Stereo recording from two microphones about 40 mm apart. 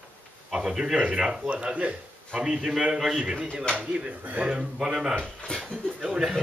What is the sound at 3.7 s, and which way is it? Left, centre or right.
Speech, right.